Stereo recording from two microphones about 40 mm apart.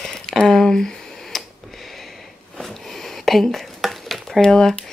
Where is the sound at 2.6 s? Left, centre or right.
Centre.